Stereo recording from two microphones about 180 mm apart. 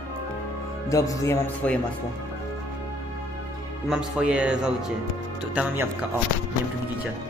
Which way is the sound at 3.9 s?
5° right (ahead or behind).